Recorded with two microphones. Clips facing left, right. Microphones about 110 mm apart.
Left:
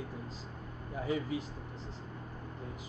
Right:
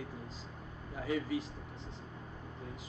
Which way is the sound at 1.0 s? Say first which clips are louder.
Even; 25° left (ahead or behind).